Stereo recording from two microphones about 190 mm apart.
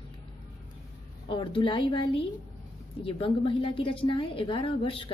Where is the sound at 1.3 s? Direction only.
25° left (ahead or behind).